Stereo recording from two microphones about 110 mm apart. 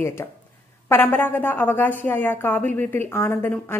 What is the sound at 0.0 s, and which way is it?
A woman's voice, 25° left (ahead or behind).